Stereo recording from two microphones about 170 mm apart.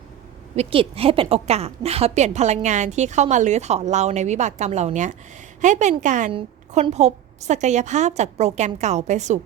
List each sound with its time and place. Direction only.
0.5 s a woman's voice: 35° right (ahead or behind)
6.3 s a woman's voice: 35° right (ahead or behind)